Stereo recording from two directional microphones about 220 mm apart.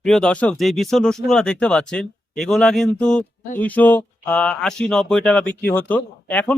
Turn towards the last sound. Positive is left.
turn(degrees=5)  # may be behind; listen again after turning